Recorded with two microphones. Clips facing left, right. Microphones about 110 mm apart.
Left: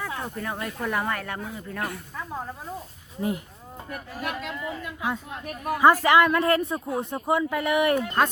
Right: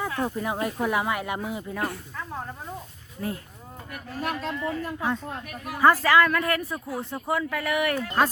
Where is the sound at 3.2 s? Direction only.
20° left (ahead or behind).